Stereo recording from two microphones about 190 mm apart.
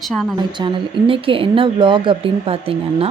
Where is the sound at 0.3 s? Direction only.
25° right (ahead or behind).